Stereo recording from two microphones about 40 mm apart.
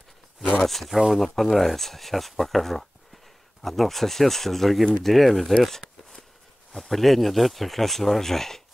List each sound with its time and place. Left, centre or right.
0.7 s speech: centre